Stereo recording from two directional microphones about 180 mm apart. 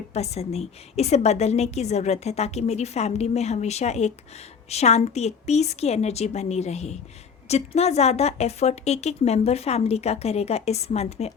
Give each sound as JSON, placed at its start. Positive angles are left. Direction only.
{"t": 0.1, "sound": "a woman's voice", "side_deg": 35}